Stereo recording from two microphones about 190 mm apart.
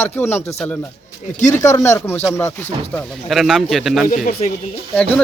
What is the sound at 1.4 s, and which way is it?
Speech, 40° left (ahead or behind).